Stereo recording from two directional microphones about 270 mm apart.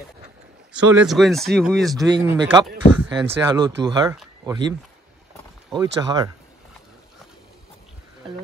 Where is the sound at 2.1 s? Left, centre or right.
Centre.